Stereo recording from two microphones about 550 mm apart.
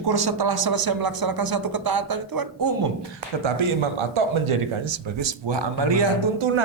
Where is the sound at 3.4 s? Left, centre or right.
Right.